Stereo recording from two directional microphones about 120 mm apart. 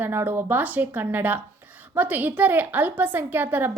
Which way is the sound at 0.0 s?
20° right (ahead or behind).